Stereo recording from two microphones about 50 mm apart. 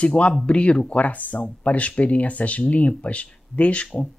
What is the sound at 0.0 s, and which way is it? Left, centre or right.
Speech, left.